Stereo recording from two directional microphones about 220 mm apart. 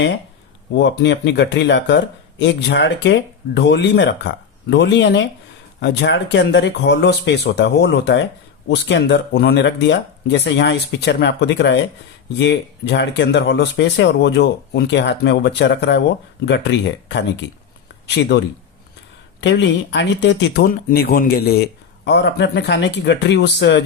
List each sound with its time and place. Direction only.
0.7 s speech: 55° left (ahead or behind)